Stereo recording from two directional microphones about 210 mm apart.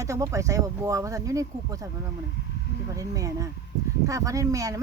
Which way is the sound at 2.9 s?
15° right (ahead or behind).